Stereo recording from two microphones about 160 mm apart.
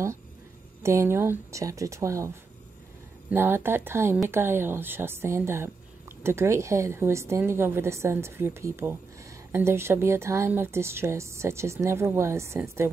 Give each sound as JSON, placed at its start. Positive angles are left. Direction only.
{"t": 0.8, "sound": "speech", "side_deg": -15}